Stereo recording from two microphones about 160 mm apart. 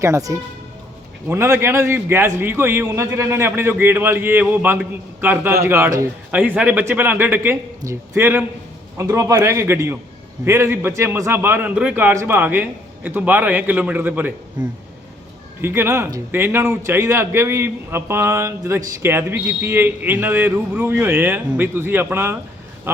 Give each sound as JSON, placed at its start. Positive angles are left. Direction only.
{"t": 0.0, "sound": "a man's voice", "side_deg": -20}
{"t": 14.6, "sound": "speech", "side_deg": -25}
{"t": 15.6, "sound": "a man's voice", "side_deg": -15}